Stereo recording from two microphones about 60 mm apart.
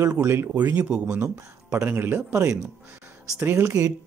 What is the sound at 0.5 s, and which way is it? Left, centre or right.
Speech, right.